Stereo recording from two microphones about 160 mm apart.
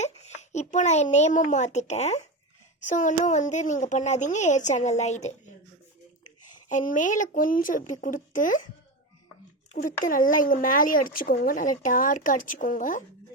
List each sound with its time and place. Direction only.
0.0 s a child's voice: 45° left (ahead or behind)
6.7 s speech: 55° left (ahead or behind)
10.1 s speech: 55° left (ahead or behind)